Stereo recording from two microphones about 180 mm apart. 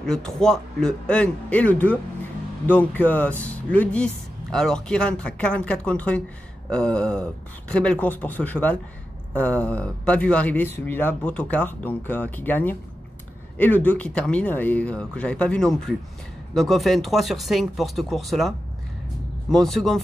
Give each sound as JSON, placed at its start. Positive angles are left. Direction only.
{"t": 0.0, "sound": "speech", "side_deg": 5}
{"t": 19.5, "sound": "speech", "side_deg": 0}